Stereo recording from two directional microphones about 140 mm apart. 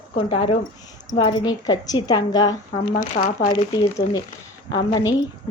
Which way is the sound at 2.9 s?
70° left (ahead or behind).